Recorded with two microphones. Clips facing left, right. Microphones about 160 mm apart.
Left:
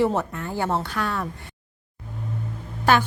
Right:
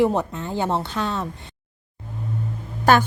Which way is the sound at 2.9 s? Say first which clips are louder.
Right 3 dB; 45° right (ahead or behind).